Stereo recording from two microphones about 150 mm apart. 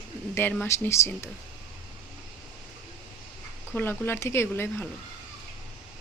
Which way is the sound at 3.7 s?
15° left (ahead or behind).